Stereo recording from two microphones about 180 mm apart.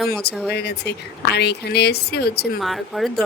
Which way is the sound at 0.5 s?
65° left (ahead or behind).